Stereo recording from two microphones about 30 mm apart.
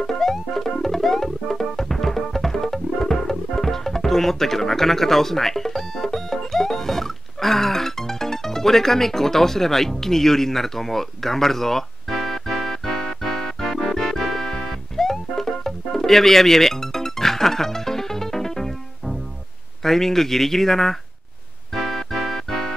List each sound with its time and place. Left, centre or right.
0.0 s music: centre
19.8 s speech: centre
21.7 s music: centre